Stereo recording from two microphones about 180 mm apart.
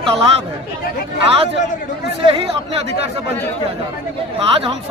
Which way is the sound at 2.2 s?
30° right (ahead or behind).